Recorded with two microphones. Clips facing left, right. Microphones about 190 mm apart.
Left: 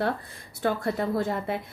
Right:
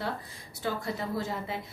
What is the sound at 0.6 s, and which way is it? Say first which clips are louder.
Speech: left 6 dB; 55° left (ahead or behind).